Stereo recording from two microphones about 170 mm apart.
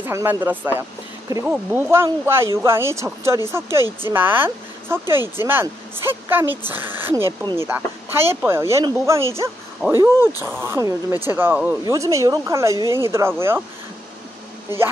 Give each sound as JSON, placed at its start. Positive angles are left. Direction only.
{"t": 0.0, "sound": "speech", "side_deg": -15}